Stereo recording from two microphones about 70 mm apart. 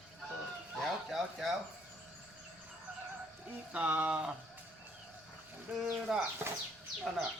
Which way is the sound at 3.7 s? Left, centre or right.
Right.